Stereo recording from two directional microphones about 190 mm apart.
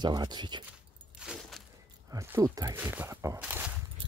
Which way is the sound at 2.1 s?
15° right (ahead or behind).